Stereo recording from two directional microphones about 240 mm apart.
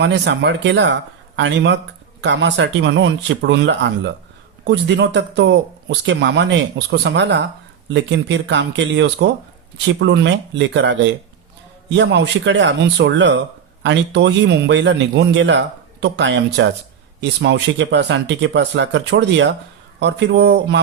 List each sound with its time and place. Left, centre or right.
0.0 s a man's voice: right